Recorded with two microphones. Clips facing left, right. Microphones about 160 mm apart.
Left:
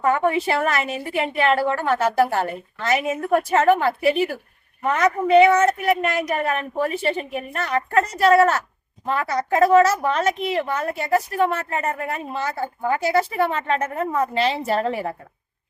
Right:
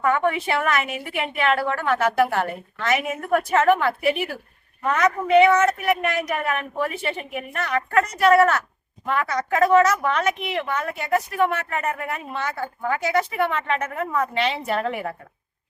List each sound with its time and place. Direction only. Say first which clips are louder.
0.0 s a woman's voice: left 2 dB; 30° left (ahead or behind)